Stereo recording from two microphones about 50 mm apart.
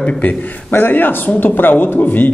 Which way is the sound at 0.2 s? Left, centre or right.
Left.